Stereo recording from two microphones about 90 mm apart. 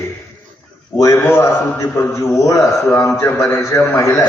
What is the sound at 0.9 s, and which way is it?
A man's voice, 35° left (ahead or behind).